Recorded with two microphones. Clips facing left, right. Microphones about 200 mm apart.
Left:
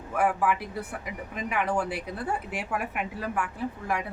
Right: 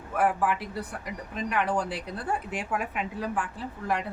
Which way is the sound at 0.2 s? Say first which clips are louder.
Even; 10° left (ahead or behind).